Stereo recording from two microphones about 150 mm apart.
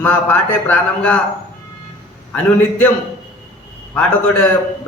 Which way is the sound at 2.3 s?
10° left (ahead or behind).